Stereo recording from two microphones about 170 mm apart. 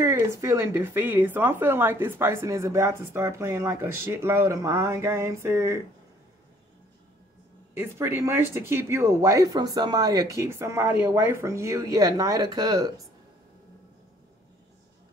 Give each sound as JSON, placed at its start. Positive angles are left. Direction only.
{"t": 0.0, "sound": "speech", "side_deg": -15}
{"t": 7.7, "sound": "speech", "side_deg": -15}